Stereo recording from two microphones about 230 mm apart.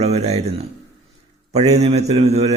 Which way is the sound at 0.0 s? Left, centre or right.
Right.